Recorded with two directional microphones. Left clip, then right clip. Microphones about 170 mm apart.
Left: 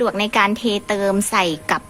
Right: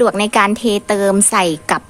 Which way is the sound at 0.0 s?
25° right (ahead or behind).